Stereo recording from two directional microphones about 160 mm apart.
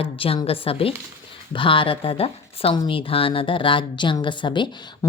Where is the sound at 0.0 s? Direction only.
35° left (ahead or behind).